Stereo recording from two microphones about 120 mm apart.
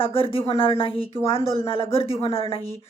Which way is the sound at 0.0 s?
50° left (ahead or behind).